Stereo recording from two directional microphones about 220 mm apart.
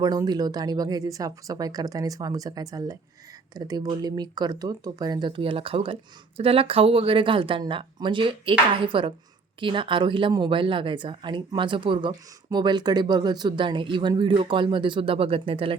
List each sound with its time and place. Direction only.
0.0 s speech: 20° right (ahead or behind)